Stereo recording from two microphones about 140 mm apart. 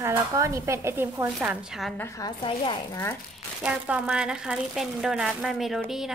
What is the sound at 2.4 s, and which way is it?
Speech, 35° left (ahead or behind).